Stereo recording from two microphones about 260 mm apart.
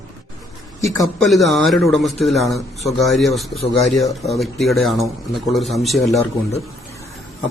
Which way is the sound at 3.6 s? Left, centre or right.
Left.